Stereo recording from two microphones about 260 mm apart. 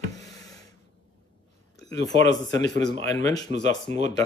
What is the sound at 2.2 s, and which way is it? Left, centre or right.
Speech, centre.